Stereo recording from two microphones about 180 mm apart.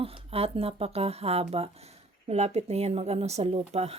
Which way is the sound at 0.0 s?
30° right (ahead or behind).